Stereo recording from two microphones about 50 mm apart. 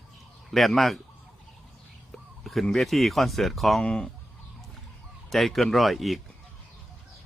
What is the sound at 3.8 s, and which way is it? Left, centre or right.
Speech, centre.